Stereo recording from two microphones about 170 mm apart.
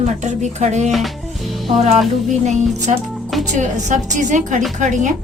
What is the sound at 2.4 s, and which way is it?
Speech, 40° right (ahead or behind).